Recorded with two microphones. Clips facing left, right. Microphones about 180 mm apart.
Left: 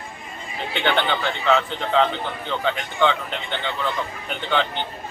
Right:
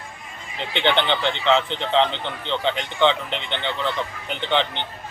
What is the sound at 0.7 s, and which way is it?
Speech, 25° right (ahead or behind).